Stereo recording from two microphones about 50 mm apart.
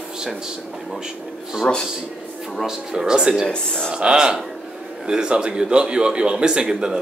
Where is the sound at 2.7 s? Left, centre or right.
Centre.